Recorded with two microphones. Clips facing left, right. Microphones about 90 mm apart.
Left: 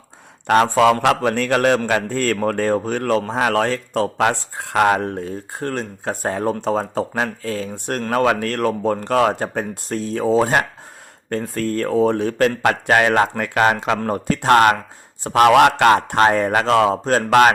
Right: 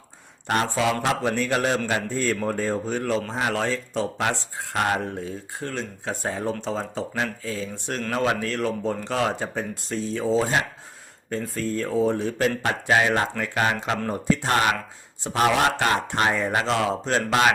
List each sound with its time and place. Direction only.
0.4 s speech: 60° left (ahead or behind)